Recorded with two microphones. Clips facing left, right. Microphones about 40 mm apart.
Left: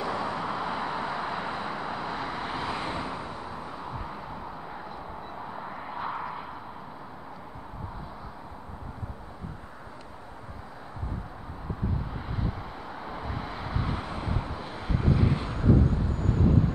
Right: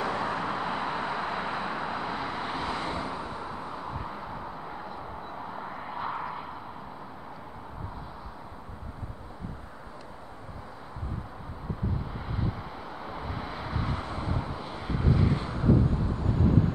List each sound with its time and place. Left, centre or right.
0.0 s vehicle: right
0.5 s vehicle: centre
3.9 s vehicle: centre
12.9 s vehicle: centre
15.2 s vehicle: centre